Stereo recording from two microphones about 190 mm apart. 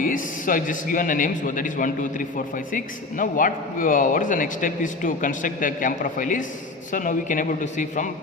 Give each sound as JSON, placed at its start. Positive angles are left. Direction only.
{"t": 0.0, "sound": "a man's voice", "side_deg": 45}